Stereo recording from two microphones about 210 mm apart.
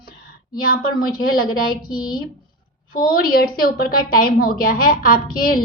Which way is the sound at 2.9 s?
45° left (ahead or behind).